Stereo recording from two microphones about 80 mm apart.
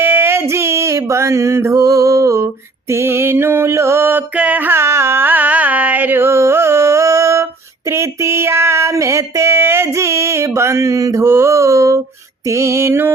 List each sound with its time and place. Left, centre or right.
0.0 s music: right
1.7 s music: right
2.9 s mantra: right
7.9 s female singing: right
11.3 s a sound: right
12.5 s mantra: right